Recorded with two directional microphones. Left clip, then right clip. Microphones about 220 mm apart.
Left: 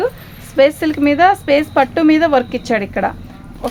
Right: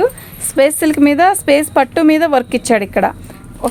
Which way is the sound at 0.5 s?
40° right (ahead or behind).